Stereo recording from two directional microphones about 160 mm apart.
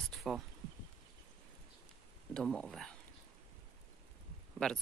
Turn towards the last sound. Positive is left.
turn(degrees=5)  # may be behind; listen again after turning